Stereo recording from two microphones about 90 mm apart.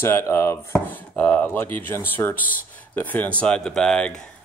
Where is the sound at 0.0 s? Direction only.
30° left (ahead or behind).